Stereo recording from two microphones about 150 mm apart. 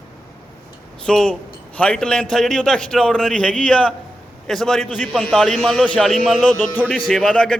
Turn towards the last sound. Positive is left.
turn(degrees=5)  # may be behind; listen again after turning